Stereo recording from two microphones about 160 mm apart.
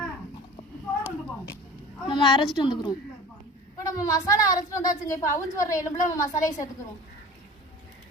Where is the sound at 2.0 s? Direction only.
30° left (ahead or behind).